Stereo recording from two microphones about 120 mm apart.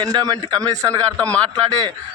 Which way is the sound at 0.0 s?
30° right (ahead or behind).